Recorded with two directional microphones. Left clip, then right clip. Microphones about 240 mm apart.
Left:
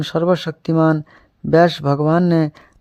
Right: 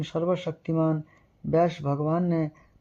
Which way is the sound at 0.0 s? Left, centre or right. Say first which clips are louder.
Left 9 dB; left.